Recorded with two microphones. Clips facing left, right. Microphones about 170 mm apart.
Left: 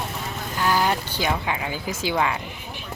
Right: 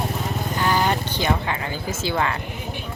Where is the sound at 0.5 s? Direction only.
5° left (ahead or behind).